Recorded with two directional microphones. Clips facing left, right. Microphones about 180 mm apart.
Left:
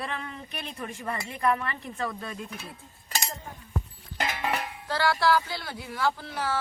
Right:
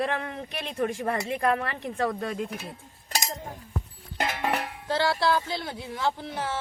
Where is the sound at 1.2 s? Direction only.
75° right (ahead or behind).